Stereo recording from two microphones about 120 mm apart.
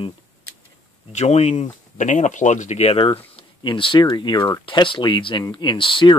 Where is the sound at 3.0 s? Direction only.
45° left (ahead or behind).